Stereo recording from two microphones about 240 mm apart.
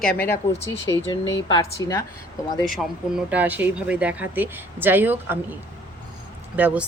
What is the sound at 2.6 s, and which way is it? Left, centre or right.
Speech, centre.